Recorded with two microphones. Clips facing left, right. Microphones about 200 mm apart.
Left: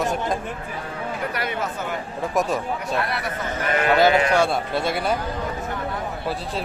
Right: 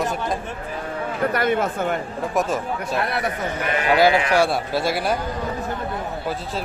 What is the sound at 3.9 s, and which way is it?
A man's voice, 10° right (ahead or behind).